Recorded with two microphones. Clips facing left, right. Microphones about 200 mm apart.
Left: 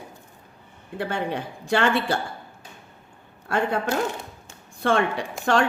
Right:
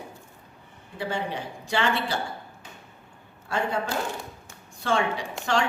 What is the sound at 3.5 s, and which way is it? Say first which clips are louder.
Speech: left 4 dB; 55° left (ahead or behind).